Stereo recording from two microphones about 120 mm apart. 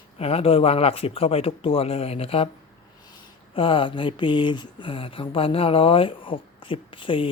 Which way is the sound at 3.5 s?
45° left (ahead or behind).